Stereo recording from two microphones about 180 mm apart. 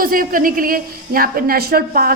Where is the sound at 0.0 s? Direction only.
50° right (ahead or behind).